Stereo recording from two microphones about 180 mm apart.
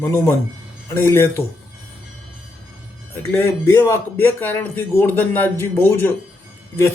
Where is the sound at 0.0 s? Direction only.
15° left (ahead or behind).